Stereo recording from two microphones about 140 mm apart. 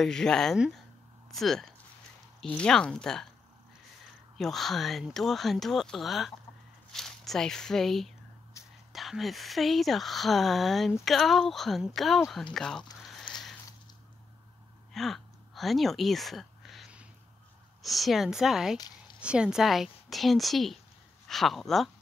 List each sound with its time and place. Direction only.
0.0 s speech: 5° left (ahead or behind)
4.4 s speech: centre (ahead or behind)
8.6 s whispering: 25° left (ahead or behind)
8.9 s speech: centre (ahead or behind)
13.0 s a sound: centre (ahead or behind)
14.9 s a sound: centre (ahead or behind)
17.8 s speech: centre (ahead or behind)